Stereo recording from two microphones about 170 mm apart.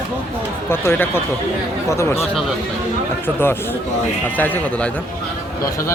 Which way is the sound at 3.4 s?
10° left (ahead or behind).